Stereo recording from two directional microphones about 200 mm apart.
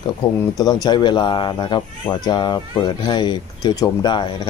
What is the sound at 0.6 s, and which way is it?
Speech, 20° left (ahead or behind).